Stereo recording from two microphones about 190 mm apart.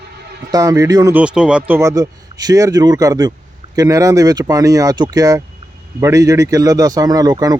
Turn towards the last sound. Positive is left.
turn(degrees=-20)  # may be behind; listen again after turning